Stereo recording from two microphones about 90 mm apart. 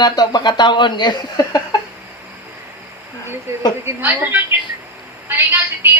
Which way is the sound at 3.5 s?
30° right (ahead or behind).